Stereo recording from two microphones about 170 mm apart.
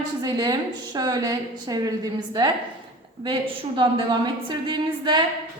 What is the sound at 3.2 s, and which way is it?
A woman's voice, 25° right (ahead or behind).